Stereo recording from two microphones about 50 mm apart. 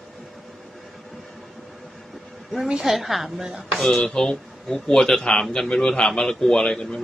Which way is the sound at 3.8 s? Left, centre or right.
Centre.